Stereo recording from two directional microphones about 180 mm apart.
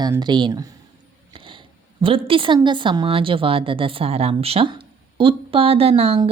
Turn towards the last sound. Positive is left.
turn(degrees=-30)  # may be behind; listen again after turning